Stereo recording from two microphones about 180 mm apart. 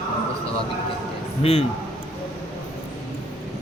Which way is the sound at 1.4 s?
35° left (ahead or behind).